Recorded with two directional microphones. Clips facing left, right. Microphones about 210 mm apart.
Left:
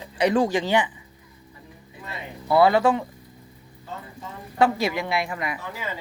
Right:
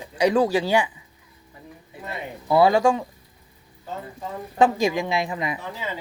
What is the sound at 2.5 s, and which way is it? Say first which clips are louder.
Speech: right 1 dB; 15° right (ahead or behind).